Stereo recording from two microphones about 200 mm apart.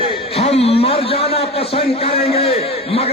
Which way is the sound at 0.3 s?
30° left (ahead or behind).